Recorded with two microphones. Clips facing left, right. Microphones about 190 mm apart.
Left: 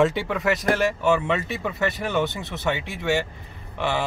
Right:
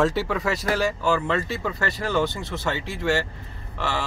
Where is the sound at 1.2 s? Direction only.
20° left (ahead or behind).